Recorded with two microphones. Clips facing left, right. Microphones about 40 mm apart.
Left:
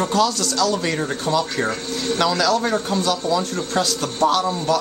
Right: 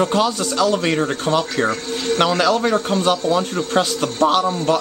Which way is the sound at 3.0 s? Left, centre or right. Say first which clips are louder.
Right 3 dB; right.